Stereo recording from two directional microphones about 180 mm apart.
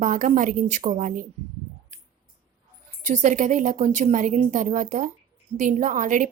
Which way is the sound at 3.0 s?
45° right (ahead or behind).